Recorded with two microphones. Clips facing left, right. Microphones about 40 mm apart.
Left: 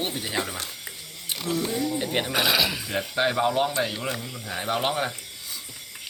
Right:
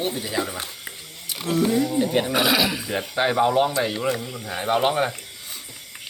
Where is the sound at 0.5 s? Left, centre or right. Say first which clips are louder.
Right 2 dB; right.